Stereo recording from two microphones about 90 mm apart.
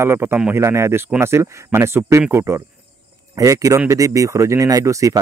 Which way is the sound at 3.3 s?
40° right (ahead or behind).